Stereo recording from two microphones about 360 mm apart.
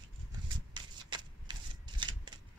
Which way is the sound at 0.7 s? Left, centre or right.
Centre.